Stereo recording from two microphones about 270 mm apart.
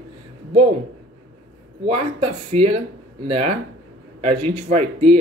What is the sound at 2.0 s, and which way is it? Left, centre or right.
Speech, right.